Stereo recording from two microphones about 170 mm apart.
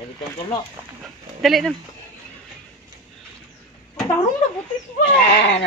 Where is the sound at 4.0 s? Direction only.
20° left (ahead or behind).